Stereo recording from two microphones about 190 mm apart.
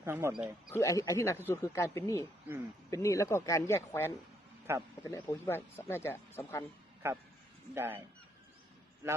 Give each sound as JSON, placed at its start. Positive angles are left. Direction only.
{"t": 0.0, "sound": "speech", "side_deg": -15}
{"t": 0.7, "sound": "speech", "side_deg": 15}
{"t": 4.7, "sound": "speech", "side_deg": -10}
{"t": 5.0, "sound": "speech", "side_deg": 15}
{"t": 7.0, "sound": "speech", "side_deg": -15}